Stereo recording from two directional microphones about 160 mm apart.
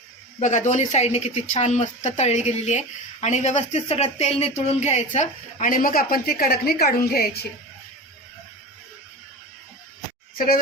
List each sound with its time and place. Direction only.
0.3 s speech: 45° left (ahead or behind); by 6.9 s 70° left (ahead or behind)
10.3 s speech: 65° left (ahead or behind)